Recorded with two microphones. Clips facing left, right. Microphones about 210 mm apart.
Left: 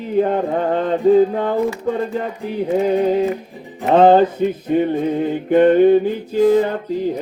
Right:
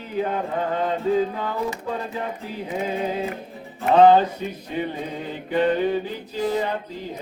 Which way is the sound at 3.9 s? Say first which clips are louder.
Left 3 dB; 50° left (ahead or behind).